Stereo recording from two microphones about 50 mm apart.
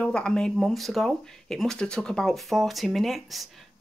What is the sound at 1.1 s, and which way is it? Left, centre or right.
Speech, centre.